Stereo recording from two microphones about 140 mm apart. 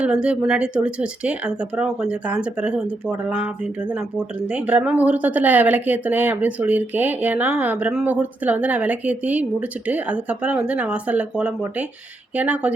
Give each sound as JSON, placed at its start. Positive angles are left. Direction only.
{"t": 0.0, "sound": "speech", "side_deg": -10}